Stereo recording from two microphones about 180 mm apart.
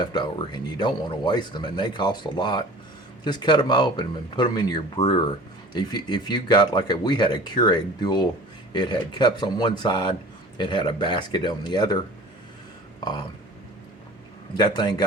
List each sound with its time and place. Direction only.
0.0 s speech: 25° left (ahead or behind)
14.5 s speech: 25° left (ahead or behind)